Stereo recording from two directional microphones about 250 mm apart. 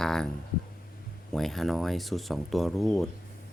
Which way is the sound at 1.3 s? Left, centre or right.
Centre.